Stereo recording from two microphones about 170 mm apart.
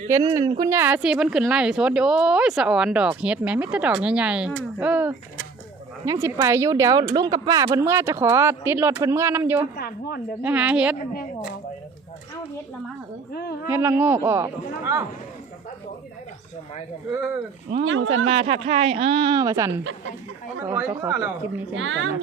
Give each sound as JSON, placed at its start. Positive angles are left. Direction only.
{"t": 0.1, "sound": "speech", "side_deg": -20}
{"t": 7.8, "sound": "speech", "side_deg": -15}
{"t": 9.7, "sound": "a woman's voice", "side_deg": 65}
{"t": 10.4, "sound": "speech", "side_deg": -10}
{"t": 10.9, "sound": "a woman's voice", "side_deg": 60}
{"t": 13.3, "sound": "a woman's voice", "side_deg": 70}
{"t": 13.7, "sound": "speech", "side_deg": -15}
{"t": 17.7, "sound": "speech", "side_deg": -40}
{"t": 21.7, "sound": "a woman's voice", "side_deg": -90}